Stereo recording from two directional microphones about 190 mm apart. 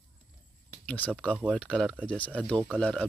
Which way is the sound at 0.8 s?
5° left (ahead or behind).